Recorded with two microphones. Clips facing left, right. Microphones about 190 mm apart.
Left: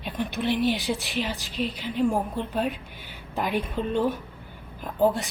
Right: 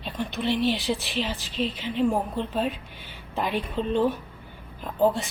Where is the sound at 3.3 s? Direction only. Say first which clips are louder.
Even; centre (ahead or behind).